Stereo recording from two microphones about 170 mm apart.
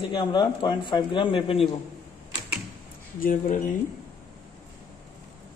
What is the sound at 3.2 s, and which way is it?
Speech, 50° left (ahead or behind).